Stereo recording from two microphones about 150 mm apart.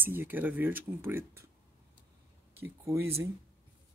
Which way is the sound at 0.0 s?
15° right (ahead or behind).